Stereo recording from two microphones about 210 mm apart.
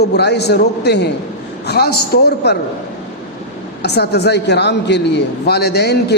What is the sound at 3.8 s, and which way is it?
A man's voice, 50° left (ahead or behind).